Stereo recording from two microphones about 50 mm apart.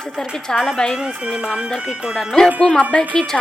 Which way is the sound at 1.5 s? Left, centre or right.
Centre.